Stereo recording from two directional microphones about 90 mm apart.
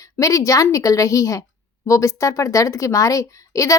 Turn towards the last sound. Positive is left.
turn(degrees=40)  # may be behind; listen again after turning